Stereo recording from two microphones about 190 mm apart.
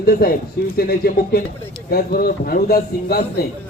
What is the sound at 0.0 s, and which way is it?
A man's voice, 50° left (ahead or behind).